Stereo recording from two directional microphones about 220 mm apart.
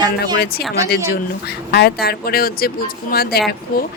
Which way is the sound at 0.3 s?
45° left (ahead or behind).